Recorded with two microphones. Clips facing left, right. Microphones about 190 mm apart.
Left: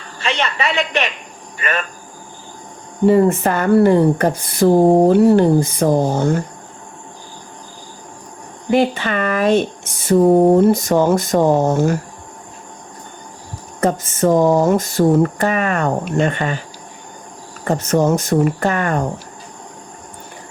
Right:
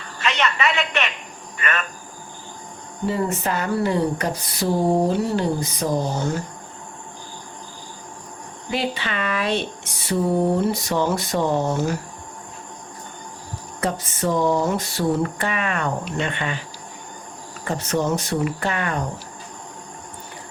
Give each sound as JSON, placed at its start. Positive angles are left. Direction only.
{"t": 0.2, "sound": "a woman's voice", "side_deg": 30}
{"t": 3.1, "sound": "speech", "side_deg": 55}
{"t": 8.7, "sound": "speech", "side_deg": 50}
{"t": 13.8, "sound": "speech", "side_deg": 45}
{"t": 17.7, "sound": "speech", "side_deg": 45}